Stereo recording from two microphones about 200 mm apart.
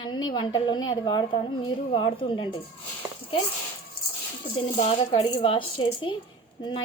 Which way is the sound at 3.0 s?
15° right (ahead or behind).